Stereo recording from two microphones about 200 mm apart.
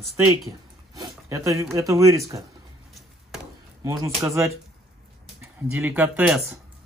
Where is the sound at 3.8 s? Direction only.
15° right (ahead or behind).